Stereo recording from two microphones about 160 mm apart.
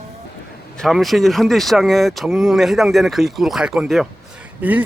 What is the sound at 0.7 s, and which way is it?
Speech, centre (ahead or behind).